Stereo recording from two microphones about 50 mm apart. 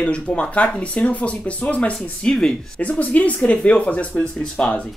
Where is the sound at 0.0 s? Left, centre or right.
Left.